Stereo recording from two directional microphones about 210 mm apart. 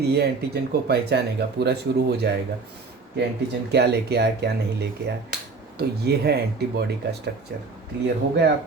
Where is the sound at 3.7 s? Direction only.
50° right (ahead or behind).